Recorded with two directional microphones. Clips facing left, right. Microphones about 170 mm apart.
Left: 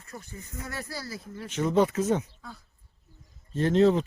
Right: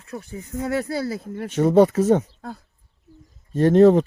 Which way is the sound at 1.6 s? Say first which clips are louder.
Right 8 dB; 40° right (ahead or behind).